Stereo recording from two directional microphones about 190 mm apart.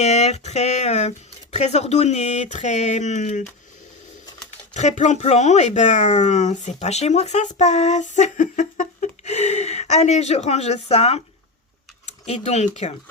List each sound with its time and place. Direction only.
0.0 s speech: 35° left (ahead or behind)
4.7 s speech: 35° left (ahead or behind)